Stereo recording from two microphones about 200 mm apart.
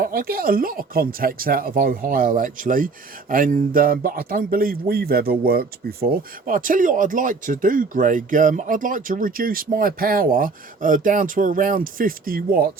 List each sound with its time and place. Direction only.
0.0 s speech: 45° right (ahead or behind)